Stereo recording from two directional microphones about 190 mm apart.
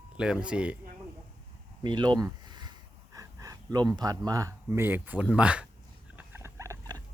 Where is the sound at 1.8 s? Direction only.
25° right (ahead or behind).